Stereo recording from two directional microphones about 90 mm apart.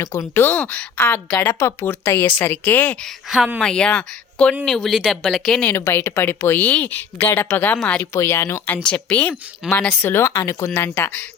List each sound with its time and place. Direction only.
0.0 s speech: 30° left (ahead or behind)
3.2 s speech: 5° right (ahead or behind)
3.6 s speech: 10° left (ahead or behind)
5.6 s speech: 25° left (ahead or behind)
6.6 s speech: 15° left (ahead or behind)
8.1 s speech: 30° left (ahead or behind)
8.7 s speech: 15° left (ahead or behind)